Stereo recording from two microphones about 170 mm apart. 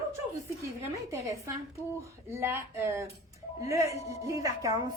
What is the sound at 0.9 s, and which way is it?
A woman's voice, 20° right (ahead or behind).